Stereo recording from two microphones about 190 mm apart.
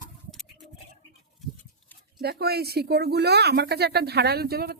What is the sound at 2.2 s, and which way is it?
Speech, 55° right (ahead or behind).